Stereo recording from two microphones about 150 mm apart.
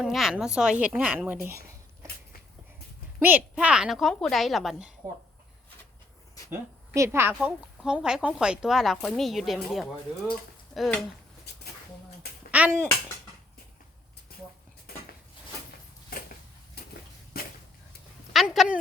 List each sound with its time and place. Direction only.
0.0 s speech: centre (ahead or behind)
3.2 s speech: 10° right (ahead or behind)
6.5 s a woman's voice: 20° right (ahead or behind)
7.3 s speech: 5° right (ahead or behind)
12.5 s a sound: 10° right (ahead or behind)
18.3 s speech: centre (ahead or behind)